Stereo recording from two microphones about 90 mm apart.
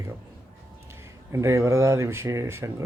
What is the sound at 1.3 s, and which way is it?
Speech, 35° right (ahead or behind).